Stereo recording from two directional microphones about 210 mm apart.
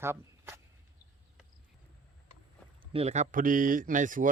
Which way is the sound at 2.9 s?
30° right (ahead or behind).